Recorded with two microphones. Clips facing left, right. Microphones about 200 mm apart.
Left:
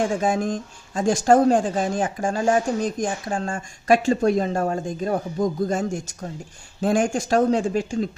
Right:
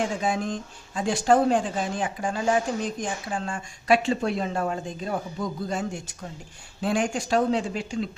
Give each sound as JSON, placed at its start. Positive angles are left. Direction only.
{"t": 0.0, "sound": "speech", "side_deg": 50}